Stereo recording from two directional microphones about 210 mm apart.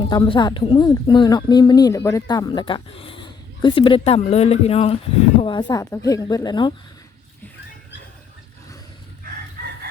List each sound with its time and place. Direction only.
0.1 s a woman's voice: 20° left (ahead or behind)